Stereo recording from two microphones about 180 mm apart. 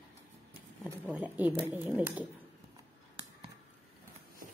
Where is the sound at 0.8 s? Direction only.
10° right (ahead or behind).